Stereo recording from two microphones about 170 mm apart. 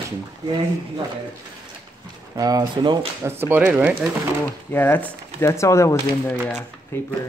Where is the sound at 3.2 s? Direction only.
15° right (ahead or behind).